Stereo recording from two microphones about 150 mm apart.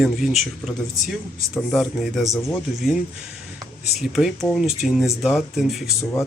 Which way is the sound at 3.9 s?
Centre (ahead or behind).